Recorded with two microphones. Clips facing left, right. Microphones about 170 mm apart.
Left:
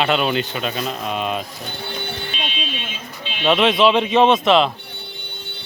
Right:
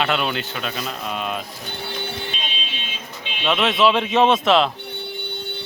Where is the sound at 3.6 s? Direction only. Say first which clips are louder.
Left 2 dB; centre (ahead or behind).